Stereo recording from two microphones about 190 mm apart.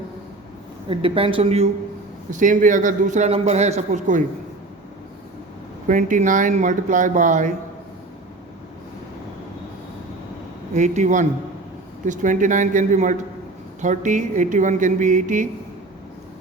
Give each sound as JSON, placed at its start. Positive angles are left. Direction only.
{"t": 0.9, "sound": "a woman's voice", "side_deg": -30}
{"t": 5.9, "sound": "a man's voice", "side_deg": -40}
{"t": 10.8, "sound": "a man's voice", "side_deg": -40}